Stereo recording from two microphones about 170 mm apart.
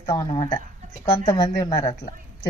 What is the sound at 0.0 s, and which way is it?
A woman's voice, 25° left (ahead or behind).